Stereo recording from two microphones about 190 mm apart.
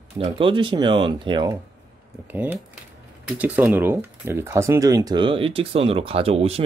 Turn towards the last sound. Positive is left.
turn(degrees=-30)  # may be behind; listen again after turning